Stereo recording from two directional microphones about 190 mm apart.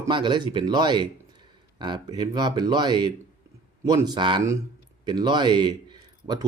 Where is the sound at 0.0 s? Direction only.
25° right (ahead or behind).